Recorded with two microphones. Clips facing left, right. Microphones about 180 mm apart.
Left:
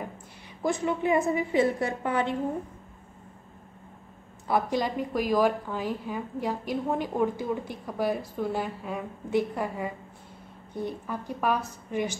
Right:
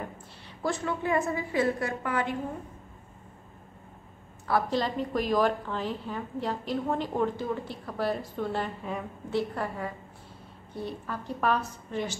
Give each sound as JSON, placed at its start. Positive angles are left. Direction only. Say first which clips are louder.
{"t": 0.6, "sound": "a woman's voice", "louder": "left 3 dB", "side_deg": 15}
{"t": 4.5, "sound": "a woman's voice", "louder": "left 1 dB", "side_deg": 15}